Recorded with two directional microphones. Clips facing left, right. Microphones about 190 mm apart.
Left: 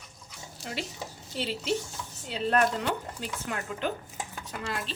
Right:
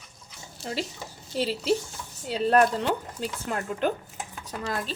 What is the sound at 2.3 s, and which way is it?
A woman's voice, 40° right (ahead or behind).